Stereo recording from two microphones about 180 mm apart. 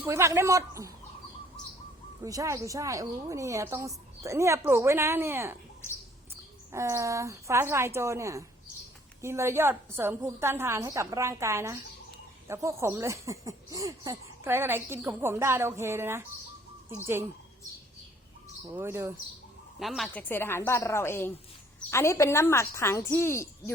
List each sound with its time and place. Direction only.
0.0 s speech: 15° right (ahead or behind)
2.2 s speech: 20° right (ahead or behind)
18.7 s speech: 10° right (ahead or behind)
19.8 s a woman's voice: centre (ahead or behind)